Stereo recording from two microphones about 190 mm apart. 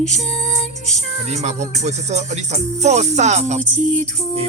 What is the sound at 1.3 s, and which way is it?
Music, 35° right (ahead or behind).